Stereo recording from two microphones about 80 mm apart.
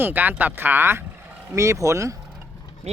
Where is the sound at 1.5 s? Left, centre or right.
Right.